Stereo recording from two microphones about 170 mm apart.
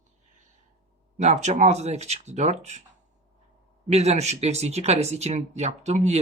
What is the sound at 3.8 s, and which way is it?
Speech, 40° right (ahead or behind).